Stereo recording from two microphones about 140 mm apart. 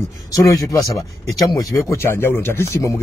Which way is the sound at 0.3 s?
25° left (ahead or behind).